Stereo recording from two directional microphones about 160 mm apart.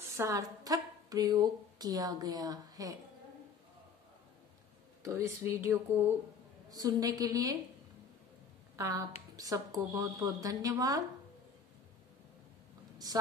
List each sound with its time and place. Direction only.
0.2 s a woman's voice: 20° right (ahead or behind)
5.0 s speech: 20° right (ahead or behind)
8.7 s a woman's voice: 20° right (ahead or behind)